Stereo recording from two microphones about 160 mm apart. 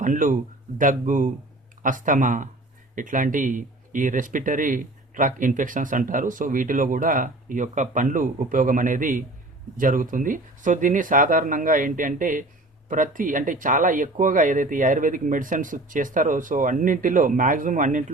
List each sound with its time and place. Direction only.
0.0 s speech: 55° right (ahead or behind)